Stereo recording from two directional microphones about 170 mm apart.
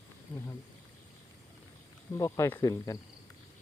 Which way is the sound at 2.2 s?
15° left (ahead or behind).